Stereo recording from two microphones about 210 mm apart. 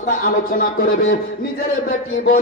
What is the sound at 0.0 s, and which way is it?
Speech, 40° left (ahead or behind).